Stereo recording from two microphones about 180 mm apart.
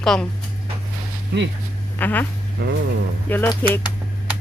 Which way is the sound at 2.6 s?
65° right (ahead or behind).